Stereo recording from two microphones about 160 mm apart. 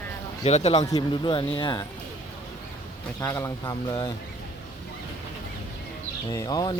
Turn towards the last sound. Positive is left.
turn(degrees=25)  # may be behind; listen again after turning